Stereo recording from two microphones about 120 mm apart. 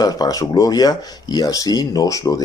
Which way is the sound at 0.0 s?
30° left (ahead or behind).